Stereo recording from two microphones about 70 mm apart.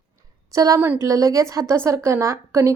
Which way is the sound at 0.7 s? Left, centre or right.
Right.